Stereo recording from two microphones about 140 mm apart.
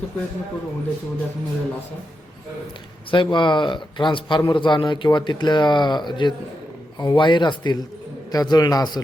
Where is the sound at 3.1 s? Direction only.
35° left (ahead or behind).